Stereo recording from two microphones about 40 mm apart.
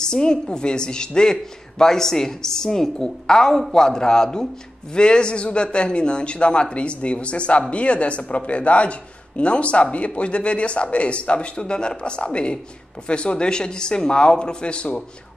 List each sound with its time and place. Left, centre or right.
0.0 s a woman's voice: centre